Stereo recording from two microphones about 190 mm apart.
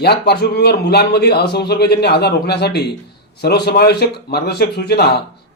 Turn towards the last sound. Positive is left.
turn(degrees=60)  # may be behind; listen again after turning